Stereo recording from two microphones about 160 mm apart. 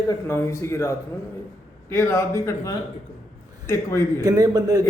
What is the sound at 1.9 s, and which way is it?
A man's voice, 15° left (ahead or behind).